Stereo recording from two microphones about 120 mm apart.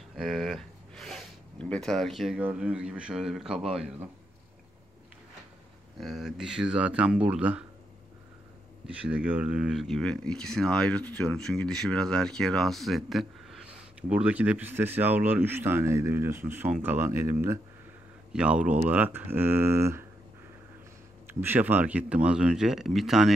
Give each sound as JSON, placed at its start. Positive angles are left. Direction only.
{"t": 0.1, "sound": "a sound", "side_deg": 0}
{"t": 2.3, "sound": "speech", "side_deg": -10}
{"t": 5.9, "sound": "speech", "side_deg": 0}
{"t": 8.8, "sound": "speech", "side_deg": -10}
{"t": 18.3, "sound": "speech", "side_deg": -10}
{"t": 21.3, "sound": "speech", "side_deg": -15}